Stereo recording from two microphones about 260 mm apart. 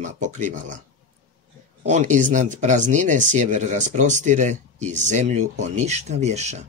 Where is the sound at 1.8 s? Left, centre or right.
Right.